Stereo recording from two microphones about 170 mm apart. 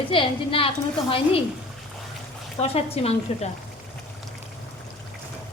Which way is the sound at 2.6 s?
35° left (ahead or behind).